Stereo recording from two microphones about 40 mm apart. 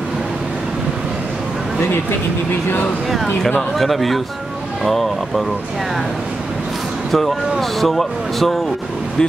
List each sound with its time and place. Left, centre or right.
3.7 s speech: centre
7.1 s speech: centre